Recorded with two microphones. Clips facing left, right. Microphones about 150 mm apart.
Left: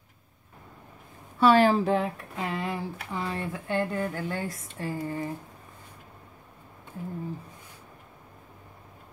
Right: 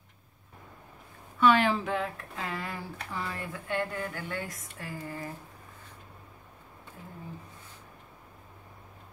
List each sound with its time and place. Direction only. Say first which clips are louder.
1.4 s speech: left 4 dB; 35° left (ahead or behind)
2.3 s speech: left 7 dB; 20° left (ahead or behind)